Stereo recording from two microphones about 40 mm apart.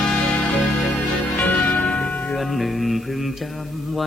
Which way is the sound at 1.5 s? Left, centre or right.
Left.